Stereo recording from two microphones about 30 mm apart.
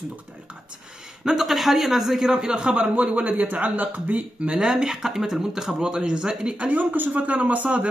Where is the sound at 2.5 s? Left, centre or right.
Right.